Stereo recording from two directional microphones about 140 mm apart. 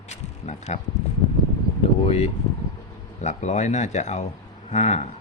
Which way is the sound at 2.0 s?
45° left (ahead or behind).